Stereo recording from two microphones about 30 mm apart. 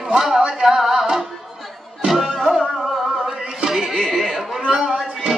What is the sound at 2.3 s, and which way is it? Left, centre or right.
Music, centre.